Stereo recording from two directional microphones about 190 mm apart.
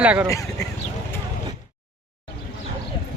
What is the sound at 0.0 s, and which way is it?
Speech, 10° right (ahead or behind).